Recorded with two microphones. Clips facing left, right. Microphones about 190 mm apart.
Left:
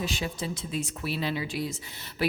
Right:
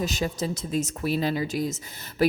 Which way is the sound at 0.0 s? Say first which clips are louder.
Right 4 dB; 40° right (ahead or behind).